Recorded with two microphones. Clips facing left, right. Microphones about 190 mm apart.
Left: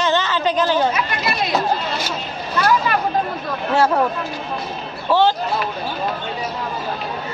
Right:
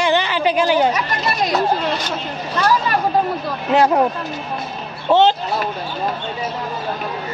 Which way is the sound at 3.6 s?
20° right (ahead or behind).